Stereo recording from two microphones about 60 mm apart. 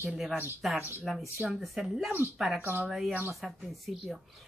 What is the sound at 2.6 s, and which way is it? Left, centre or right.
Speech, right.